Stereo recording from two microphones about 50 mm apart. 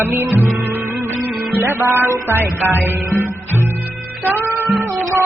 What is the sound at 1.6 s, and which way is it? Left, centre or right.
Music, right.